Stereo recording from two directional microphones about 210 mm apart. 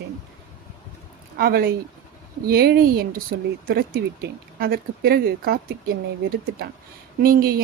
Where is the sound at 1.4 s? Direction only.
45° right (ahead or behind).